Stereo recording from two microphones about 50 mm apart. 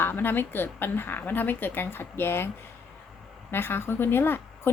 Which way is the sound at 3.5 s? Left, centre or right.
Left.